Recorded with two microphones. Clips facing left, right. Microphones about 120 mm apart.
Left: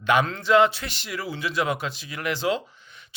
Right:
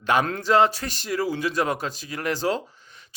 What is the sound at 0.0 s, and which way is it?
Speech, 40° right (ahead or behind).